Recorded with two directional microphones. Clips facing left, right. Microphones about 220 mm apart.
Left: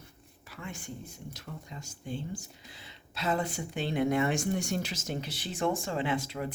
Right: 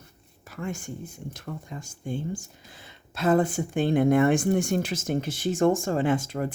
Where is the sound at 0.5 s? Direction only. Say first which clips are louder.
Right 8 dB; 45° right (ahead or behind).